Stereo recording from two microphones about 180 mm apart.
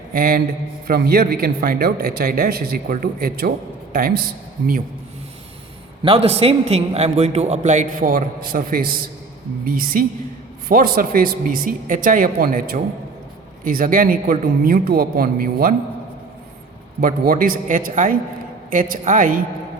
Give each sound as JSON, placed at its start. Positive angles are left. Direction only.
{"t": 0.1, "sound": "a man's voice", "side_deg": -55}
{"t": 6.0, "sound": "a man's voice", "side_deg": -30}
{"t": 17.0, "sound": "a man's voice", "side_deg": -50}